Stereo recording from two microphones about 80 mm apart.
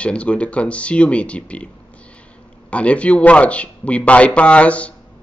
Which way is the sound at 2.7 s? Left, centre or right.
Centre.